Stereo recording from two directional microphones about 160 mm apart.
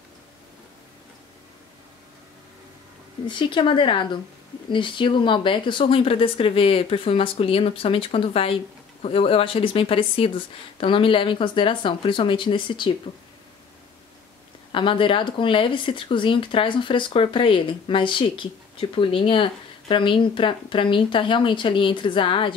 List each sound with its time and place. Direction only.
3.3 s speech: 30° left (ahead or behind)
14.7 s speech: 30° left (ahead or behind)